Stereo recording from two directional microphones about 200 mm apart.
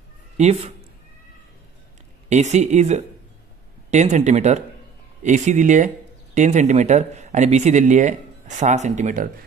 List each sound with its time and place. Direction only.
0.4 s speech: 30° right (ahead or behind)
2.2 s speech: 35° right (ahead or behind)